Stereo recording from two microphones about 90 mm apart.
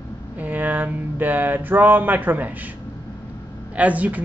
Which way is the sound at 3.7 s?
15° right (ahead or behind).